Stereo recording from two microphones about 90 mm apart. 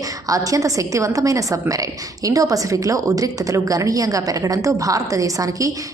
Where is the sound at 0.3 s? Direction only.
40° right (ahead or behind).